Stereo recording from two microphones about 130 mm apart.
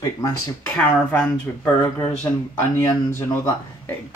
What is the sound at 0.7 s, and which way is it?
Speech, 10° left (ahead or behind).